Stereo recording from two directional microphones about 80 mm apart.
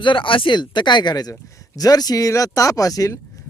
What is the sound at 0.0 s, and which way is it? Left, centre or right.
Speech, left.